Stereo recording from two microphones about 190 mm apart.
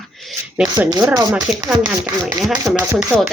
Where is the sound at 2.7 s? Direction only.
Centre (ahead or behind).